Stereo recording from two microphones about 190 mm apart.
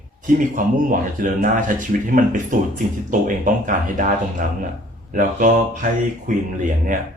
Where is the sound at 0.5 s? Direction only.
45° right (ahead or behind).